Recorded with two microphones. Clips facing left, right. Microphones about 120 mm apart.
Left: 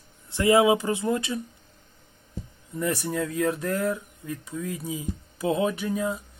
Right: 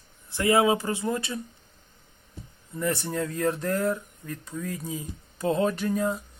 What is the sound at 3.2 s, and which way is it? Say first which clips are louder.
Speech: even; centre (ahead or behind).